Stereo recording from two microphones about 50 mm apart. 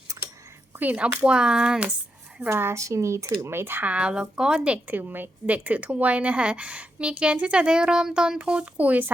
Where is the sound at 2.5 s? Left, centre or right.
Right.